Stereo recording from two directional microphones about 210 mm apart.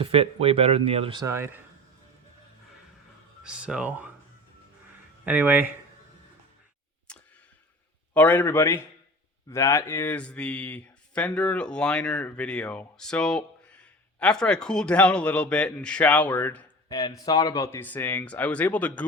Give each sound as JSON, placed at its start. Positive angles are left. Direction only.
{"t": 0.0, "sound": "speech", "side_deg": -25}
{"t": 1.2, "sound": "speech", "side_deg": -10}
{"t": 3.4, "sound": "speech", "side_deg": -5}
{"t": 5.2, "sound": "speech", "side_deg": -10}
{"t": 8.1, "sound": "a man's voice", "side_deg": 10}